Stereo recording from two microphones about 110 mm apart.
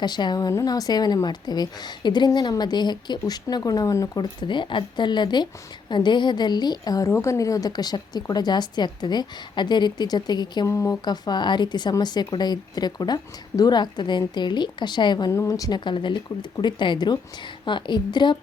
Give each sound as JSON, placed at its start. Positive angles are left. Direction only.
{"t": 0.0, "sound": "speech", "side_deg": 40}
{"t": 10.7, "sound": "speech", "side_deg": 30}
{"t": 11.0, "sound": "speech", "side_deg": 40}
{"t": 15.3, "sound": "speech", "side_deg": 30}
{"t": 15.8, "sound": "speech", "side_deg": 45}